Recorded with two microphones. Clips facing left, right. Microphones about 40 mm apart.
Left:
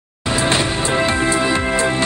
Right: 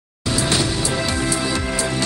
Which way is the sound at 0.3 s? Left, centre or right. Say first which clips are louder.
Left 3 dB; left.